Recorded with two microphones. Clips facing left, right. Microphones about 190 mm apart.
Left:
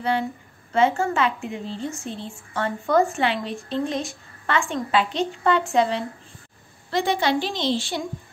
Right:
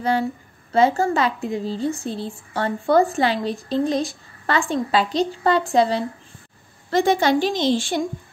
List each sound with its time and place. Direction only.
0.7 s speech: 35° right (ahead or behind)
6.9 s a woman's voice: 45° right (ahead or behind)